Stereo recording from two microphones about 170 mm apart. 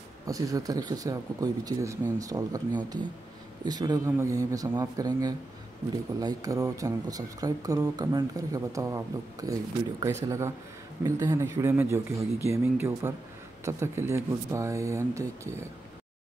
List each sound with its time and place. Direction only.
0.3 s speech: 20° right (ahead or behind)